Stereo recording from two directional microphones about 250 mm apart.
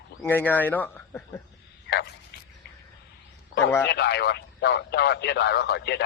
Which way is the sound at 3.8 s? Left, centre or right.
Left.